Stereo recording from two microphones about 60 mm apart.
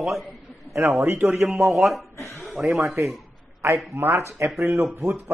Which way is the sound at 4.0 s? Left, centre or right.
Right.